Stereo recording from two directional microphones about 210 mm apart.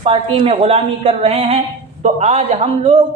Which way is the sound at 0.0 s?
25° right (ahead or behind).